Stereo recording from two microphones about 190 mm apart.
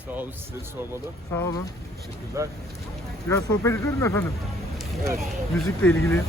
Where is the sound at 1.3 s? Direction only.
15° left (ahead or behind).